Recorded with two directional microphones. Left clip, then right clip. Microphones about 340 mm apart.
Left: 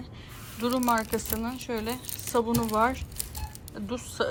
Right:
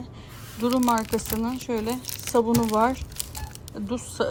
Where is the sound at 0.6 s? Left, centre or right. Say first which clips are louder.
Right 3 dB; centre.